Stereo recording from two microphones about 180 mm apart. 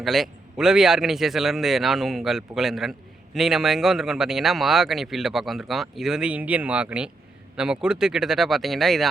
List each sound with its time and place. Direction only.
0.0 s speech: centre (ahead or behind)